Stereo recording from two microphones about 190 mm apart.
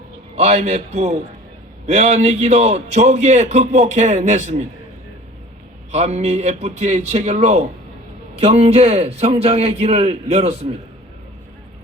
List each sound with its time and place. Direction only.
0.3 s a man's voice: 35° right (ahead or behind)
5.9 s a man's voice: 35° right (ahead or behind)